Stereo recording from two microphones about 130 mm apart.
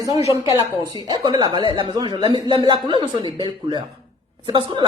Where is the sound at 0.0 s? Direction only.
25° right (ahead or behind).